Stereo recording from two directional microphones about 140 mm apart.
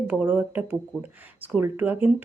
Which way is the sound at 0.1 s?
10° right (ahead or behind).